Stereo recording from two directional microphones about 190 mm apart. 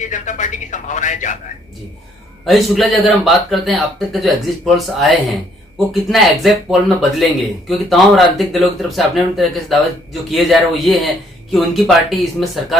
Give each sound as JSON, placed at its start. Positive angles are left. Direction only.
{"t": 0.0, "sound": "speech", "side_deg": 40}
{"t": 2.5, "sound": "speech", "side_deg": 0}